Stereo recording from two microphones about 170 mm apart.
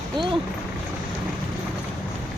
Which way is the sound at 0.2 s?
25° right (ahead or behind).